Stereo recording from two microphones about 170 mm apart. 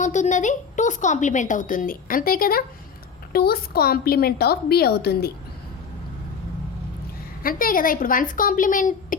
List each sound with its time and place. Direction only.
0.0 s a woman's voice: 45° left (ahead or behind); by 5.3 s 70° left (ahead or behind)
7.4 s a woman's voice: 55° left (ahead or behind)